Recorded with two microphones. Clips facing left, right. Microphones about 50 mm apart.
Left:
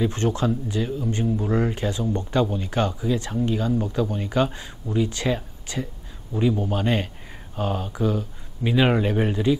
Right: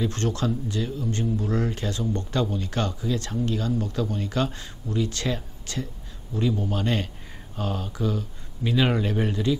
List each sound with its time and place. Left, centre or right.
0.0 s speech: centre